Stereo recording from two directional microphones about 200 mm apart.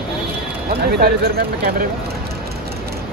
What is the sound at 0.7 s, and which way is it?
Speech, 50° right (ahead or behind).